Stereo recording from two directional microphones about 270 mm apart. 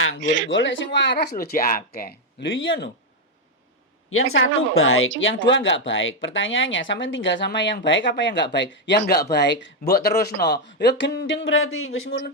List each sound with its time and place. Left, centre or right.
0.2 s speech: right
0.4 s speech: left
4.1 s speech: left